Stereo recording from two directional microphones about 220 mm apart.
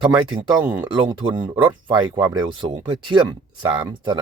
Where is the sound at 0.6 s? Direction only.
15° right (ahead or behind).